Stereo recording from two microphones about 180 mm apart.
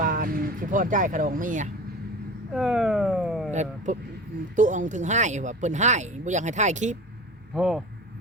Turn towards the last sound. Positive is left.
turn(degrees=-5)  # may be behind; listen again after turning